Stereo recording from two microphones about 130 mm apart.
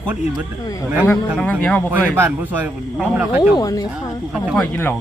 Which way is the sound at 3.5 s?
30° left (ahead or behind).